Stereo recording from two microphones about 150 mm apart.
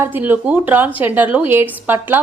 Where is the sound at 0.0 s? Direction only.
15° right (ahead or behind).